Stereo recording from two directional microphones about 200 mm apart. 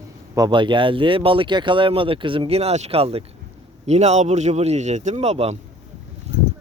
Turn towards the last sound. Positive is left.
turn(degrees=-35)  # may be behind; listen again after turning